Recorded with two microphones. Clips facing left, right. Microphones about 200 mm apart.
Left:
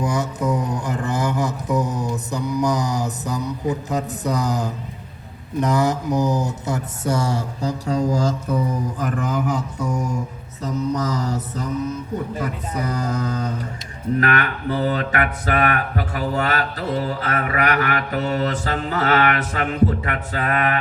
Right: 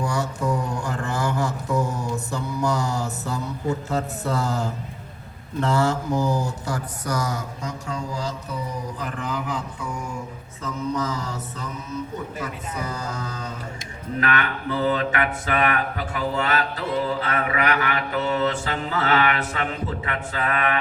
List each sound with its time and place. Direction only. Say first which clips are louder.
0.0 s mantra: left 3 dB; 20° left (ahead or behind); by 20.7 s 40° left (ahead or behind)